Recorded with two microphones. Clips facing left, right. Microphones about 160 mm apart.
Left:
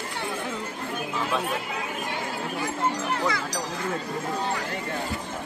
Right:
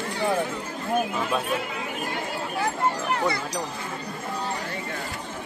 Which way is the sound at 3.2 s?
90° left.